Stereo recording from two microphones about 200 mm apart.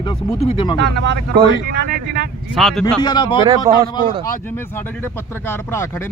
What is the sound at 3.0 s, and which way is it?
Speech, 20° left (ahead or behind).